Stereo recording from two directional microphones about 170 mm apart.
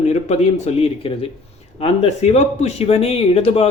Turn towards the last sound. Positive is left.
turn(degrees=35)  # may be behind; listen again after turning